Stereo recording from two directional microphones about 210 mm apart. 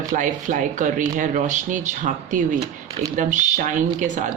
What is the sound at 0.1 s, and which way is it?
Speech, 35° right (ahead or behind).